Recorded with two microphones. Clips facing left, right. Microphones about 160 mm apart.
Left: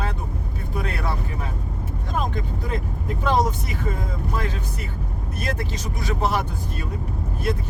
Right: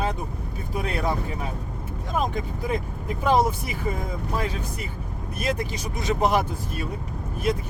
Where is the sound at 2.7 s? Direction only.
10° right (ahead or behind).